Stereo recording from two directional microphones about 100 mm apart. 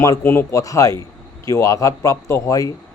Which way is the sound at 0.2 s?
25° left (ahead or behind).